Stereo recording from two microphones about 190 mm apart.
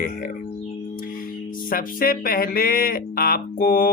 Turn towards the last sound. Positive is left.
turn(degrees=50)  # may be behind; listen again after turning